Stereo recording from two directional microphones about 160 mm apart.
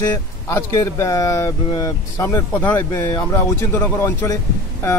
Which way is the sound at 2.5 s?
10° left (ahead or behind).